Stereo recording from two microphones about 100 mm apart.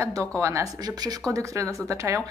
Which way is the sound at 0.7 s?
40° right (ahead or behind).